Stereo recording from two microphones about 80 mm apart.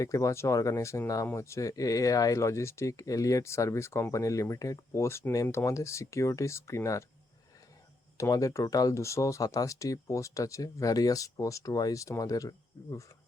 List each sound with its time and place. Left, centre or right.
0.0 s speech: left
8.2 s speech: left